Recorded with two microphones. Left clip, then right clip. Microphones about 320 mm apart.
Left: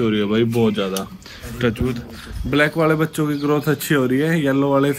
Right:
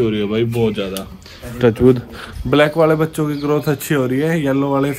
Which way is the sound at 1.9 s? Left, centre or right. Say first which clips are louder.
Right 6 dB; right.